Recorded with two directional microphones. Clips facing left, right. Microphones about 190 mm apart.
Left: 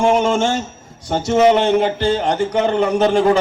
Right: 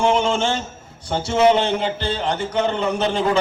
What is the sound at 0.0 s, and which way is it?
Speech, 40° left (ahead or behind).